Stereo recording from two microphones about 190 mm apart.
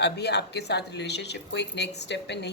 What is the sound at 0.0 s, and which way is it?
A woman's voice, 60° left (ahead or behind).